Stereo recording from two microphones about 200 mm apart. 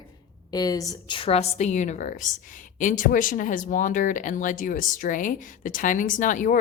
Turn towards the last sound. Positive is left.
turn(degrees=45)  # may be behind; listen again after turning